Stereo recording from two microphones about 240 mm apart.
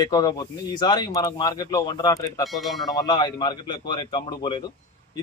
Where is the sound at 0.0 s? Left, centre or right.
Centre.